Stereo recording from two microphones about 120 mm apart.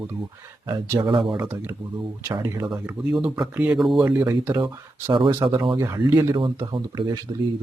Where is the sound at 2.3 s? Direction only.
25° right (ahead or behind).